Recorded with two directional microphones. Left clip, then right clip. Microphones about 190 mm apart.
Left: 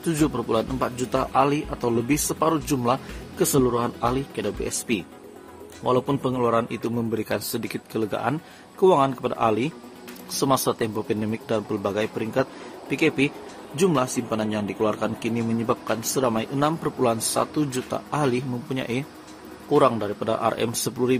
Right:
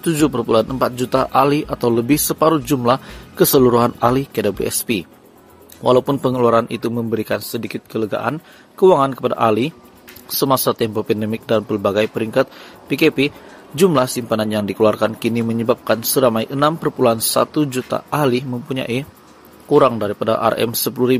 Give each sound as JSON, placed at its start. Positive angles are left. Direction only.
{"t": 0.0, "sound": "a man's voice", "side_deg": -30}